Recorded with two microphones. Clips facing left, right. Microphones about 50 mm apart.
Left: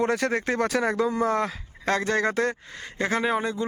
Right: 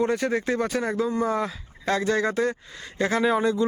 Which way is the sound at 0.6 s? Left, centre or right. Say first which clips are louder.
Left 2 dB; left.